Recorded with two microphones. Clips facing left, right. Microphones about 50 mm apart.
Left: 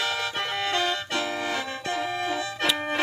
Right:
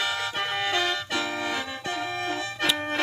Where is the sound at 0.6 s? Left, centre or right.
Centre.